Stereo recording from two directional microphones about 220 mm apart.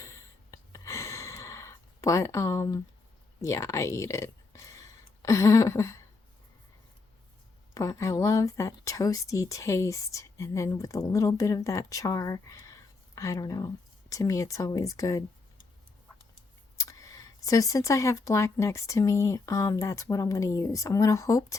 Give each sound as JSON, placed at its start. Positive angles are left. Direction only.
{"t": 0.0, "sound": "gasp", "side_deg": 15}
{"t": 3.4, "sound": "speech", "side_deg": 15}
{"t": 7.7, "sound": "speech", "side_deg": 15}
{"t": 16.7, "sound": "speech", "side_deg": 15}